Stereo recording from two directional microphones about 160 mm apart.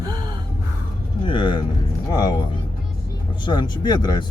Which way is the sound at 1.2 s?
30° left (ahead or behind).